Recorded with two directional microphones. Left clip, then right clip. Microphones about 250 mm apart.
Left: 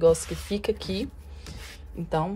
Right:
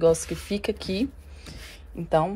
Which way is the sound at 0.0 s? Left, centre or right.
Centre.